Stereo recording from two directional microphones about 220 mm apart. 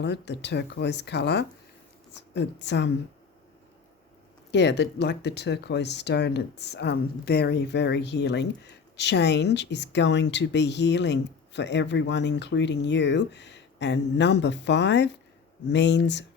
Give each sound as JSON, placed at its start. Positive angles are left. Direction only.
{"t": 0.0, "sound": "speech", "side_deg": 50}
{"t": 4.5, "sound": "speech", "side_deg": 50}